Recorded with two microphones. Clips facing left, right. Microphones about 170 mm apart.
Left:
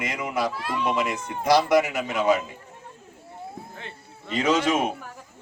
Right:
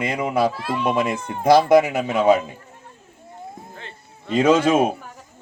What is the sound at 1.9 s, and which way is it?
Speech, 55° right (ahead or behind).